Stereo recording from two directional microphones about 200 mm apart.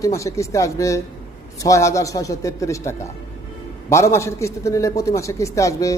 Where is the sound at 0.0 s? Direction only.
15° left (ahead or behind).